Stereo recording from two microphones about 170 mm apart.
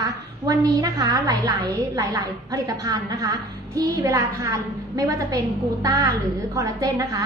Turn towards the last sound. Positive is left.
turn(degrees=-20)  # may be behind; listen again after turning